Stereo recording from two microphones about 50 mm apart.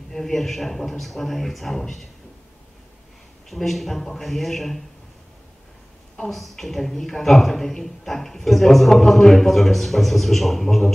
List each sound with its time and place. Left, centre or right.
0.1 s a man's voice: centre
3.4 s a man's voice: centre
6.3 s a man's voice: centre